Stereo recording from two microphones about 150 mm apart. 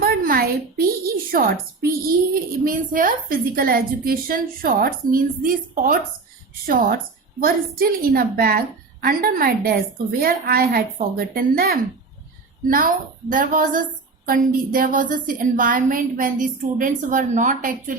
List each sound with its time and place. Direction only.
0.0 s a sound: 80° right
2.6 s a woman's voice: 70° right (ahead or behind)
12.6 s a woman's voice: 65° right (ahead or behind)